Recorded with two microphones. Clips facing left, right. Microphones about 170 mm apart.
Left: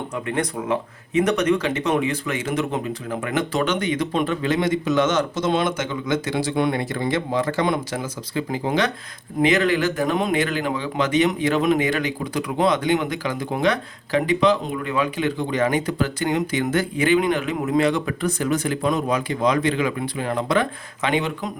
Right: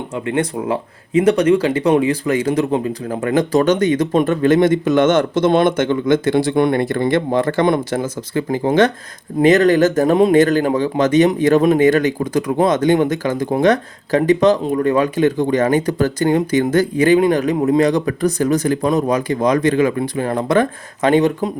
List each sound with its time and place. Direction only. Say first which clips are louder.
0.3 s speech: right 5 dB; 30° right (ahead or behind)